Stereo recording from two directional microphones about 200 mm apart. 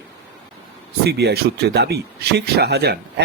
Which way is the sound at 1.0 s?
55° right (ahead or behind).